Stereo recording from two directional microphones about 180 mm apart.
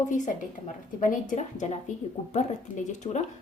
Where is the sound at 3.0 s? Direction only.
40° left (ahead or behind).